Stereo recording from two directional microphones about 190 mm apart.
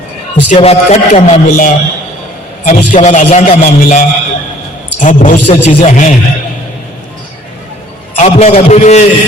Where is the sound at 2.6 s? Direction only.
40° left (ahead or behind).